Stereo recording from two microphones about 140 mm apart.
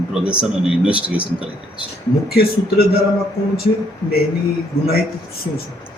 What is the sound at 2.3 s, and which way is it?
Speech, 90° left.